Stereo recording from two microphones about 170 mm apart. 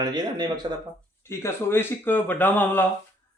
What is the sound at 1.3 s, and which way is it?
Speech, 15° left (ahead or behind).